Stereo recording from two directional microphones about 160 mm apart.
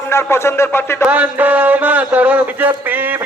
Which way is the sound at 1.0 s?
10° right (ahead or behind).